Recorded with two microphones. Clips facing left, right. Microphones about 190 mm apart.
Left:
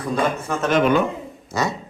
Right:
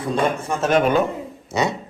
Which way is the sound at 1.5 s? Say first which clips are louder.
Right 2 dB; 20° right (ahead or behind).